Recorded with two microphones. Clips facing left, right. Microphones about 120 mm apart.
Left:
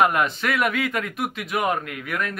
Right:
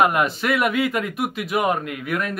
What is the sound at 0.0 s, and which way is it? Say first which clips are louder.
Speech: right 1 dB; 10° right (ahead or behind).